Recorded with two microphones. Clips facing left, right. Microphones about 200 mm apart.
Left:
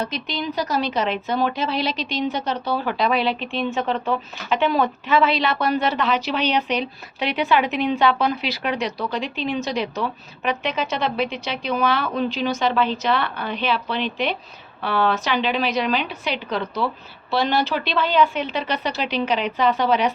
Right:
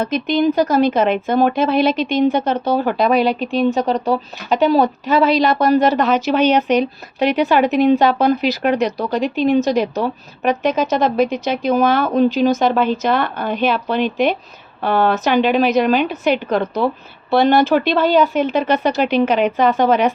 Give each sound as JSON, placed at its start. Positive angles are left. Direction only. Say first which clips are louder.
{"t": 0.0, "sound": "a woman's voice", "louder": "right 11 dB", "side_deg": -50}